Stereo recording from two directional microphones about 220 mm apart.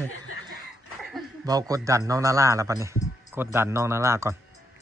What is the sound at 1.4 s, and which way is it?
Speech, 15° right (ahead or behind).